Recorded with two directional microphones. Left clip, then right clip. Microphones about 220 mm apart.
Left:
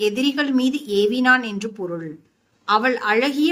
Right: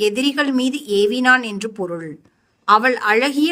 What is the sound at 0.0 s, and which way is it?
A woman's voice, 55° right (ahead or behind).